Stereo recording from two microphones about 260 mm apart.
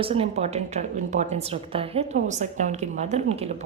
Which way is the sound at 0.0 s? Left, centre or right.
Right.